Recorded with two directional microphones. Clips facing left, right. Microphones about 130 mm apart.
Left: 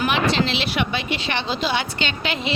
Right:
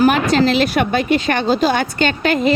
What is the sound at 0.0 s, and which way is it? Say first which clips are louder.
Speech: right 7 dB; 45° right (ahead or behind).